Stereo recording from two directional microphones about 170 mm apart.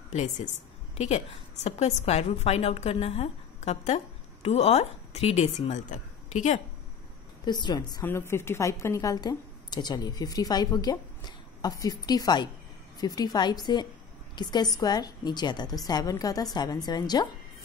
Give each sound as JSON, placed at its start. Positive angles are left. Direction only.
{"t": 0.9, "sound": "a woman's voice", "side_deg": 40}
{"t": 7.4, "sound": "a woman's voice", "side_deg": 25}